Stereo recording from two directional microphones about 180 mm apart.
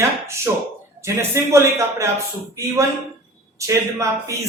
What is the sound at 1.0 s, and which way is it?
A man's voice, 15° right (ahead or behind).